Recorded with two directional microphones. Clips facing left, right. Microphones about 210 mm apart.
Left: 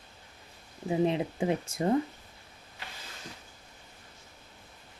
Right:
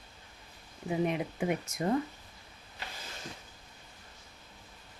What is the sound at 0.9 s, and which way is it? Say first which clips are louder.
Speech: left 4 dB; 30° left (ahead or behind).